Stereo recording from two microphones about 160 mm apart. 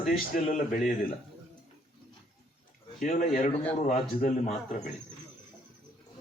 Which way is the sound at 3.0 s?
45° left (ahead or behind).